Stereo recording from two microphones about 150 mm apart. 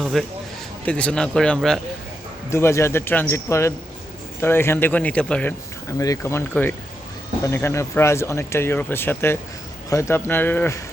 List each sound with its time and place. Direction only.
0.0 s a man's voice: centre (ahead or behind)
2.5 s speech: 20° left (ahead or behind)
6.0 s speech: 20° left (ahead or behind)